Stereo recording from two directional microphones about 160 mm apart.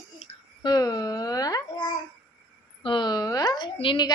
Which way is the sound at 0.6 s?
25° left (ahead or behind).